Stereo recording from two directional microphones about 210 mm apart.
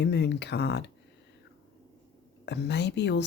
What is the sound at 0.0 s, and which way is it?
Speech, 55° left (ahead or behind).